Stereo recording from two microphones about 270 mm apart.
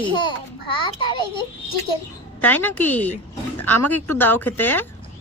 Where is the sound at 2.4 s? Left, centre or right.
Centre.